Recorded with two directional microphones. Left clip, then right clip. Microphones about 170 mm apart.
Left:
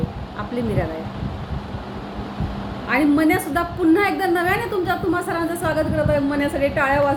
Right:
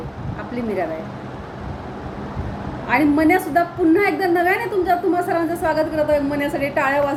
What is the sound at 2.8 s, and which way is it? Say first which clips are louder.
A woman's voice: right 1 dB; 5° left (ahead or behind).